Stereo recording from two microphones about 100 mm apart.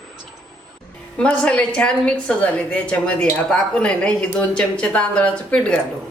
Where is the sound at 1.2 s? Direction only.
10° left (ahead or behind).